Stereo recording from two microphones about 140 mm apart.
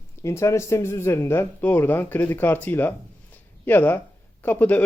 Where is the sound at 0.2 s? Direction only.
20° left (ahead or behind).